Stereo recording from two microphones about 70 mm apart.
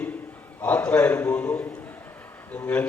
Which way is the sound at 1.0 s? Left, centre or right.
Left.